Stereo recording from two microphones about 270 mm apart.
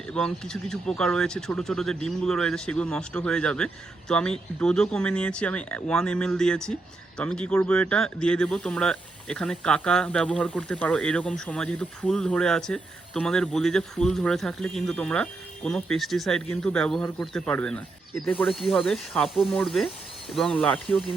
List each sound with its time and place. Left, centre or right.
0.1 s speech: centre